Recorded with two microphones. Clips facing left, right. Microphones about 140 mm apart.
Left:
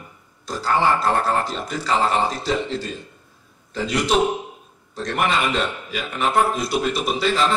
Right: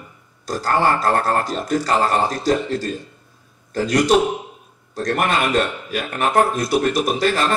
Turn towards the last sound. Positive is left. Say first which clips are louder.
# right 2 dB
turn(degrees=-50)  # may be behind; listen again after turning